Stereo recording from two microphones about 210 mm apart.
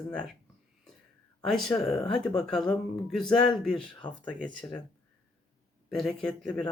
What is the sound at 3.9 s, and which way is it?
Speech, 20° left (ahead or behind).